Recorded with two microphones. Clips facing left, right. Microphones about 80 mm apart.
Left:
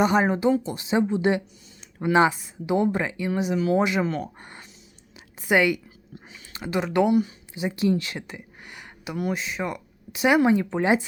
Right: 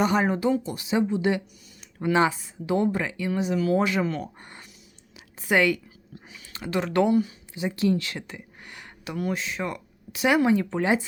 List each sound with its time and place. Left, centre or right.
0.0 s a woman's voice: left
6.1 s speech: left